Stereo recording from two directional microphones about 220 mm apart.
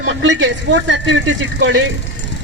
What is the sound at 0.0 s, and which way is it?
Speech, 60° right (ahead or behind).